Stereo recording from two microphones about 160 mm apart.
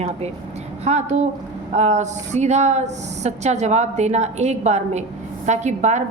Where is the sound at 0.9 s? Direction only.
45° right (ahead or behind).